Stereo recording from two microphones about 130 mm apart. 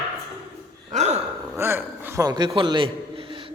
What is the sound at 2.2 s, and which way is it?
A man's voice, 35° right (ahead or behind).